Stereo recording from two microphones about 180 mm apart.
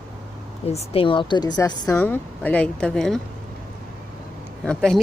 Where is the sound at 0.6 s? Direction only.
35° left (ahead or behind).